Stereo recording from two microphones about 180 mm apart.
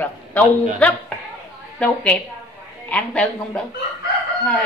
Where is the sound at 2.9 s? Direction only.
5° left (ahead or behind).